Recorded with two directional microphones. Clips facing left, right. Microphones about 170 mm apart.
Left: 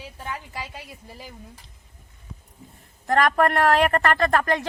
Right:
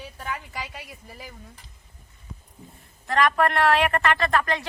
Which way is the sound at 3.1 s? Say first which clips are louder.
Left 2 dB; 45° left (ahead or behind).